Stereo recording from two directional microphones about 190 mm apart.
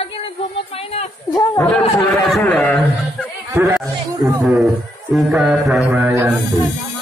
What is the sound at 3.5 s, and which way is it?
Speech, 15° right (ahead or behind).